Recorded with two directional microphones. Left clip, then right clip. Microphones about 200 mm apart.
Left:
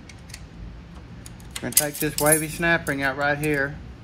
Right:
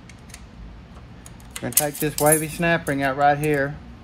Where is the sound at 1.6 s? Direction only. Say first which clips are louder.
Right 1 dB; 55° right (ahead or behind).